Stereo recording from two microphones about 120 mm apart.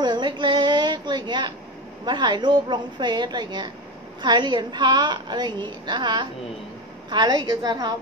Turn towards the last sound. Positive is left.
turn(degrees=-35)  # may be behind; listen again after turning